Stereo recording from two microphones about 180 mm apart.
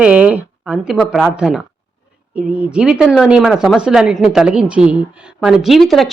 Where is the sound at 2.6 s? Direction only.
5° right (ahead or behind).